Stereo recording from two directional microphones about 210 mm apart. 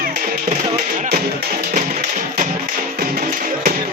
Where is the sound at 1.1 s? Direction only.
45° right (ahead or behind).